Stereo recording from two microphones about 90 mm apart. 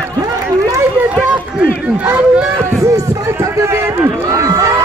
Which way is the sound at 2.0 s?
20° right (ahead or behind).